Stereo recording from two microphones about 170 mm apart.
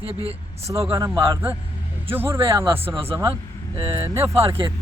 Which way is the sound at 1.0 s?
15° right (ahead or behind).